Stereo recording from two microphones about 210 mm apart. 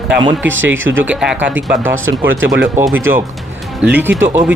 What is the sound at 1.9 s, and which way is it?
Speech, 70° right (ahead or behind).